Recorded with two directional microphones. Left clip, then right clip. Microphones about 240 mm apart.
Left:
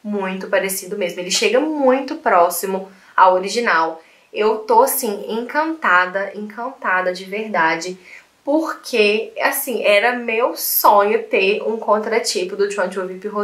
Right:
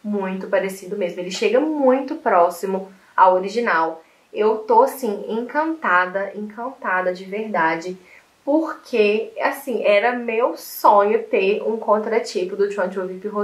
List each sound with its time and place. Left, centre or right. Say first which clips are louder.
0.1 s speech: left 2 dB; centre
8.5 s speech: left 1 dB; centre
8.9 s speech: left 2 dB; centre